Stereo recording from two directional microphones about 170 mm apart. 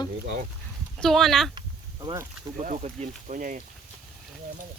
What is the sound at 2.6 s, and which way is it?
Speech, 45° right (ahead or behind).